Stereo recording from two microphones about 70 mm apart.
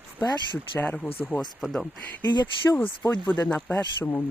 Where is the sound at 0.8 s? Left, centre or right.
Centre.